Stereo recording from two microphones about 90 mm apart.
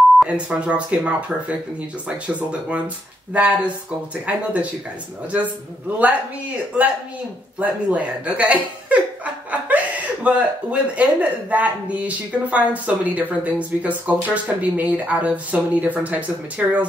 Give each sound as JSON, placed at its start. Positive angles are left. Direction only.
{"t": 0.2, "sound": "speech", "side_deg": -10}
{"t": 7.5, "sound": "speech", "side_deg": -15}